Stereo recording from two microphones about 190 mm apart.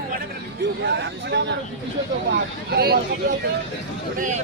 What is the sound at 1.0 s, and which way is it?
Speech, 70° right (ahead or behind).